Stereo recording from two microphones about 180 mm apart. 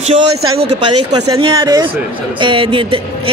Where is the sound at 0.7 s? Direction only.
35° right (ahead or behind).